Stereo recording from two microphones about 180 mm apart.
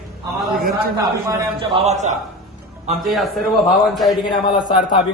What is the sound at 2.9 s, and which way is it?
A man's voice, centre (ahead or behind).